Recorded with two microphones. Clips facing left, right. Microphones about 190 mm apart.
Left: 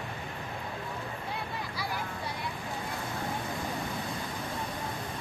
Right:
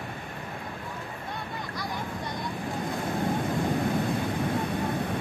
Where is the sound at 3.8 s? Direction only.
65° right (ahead or behind).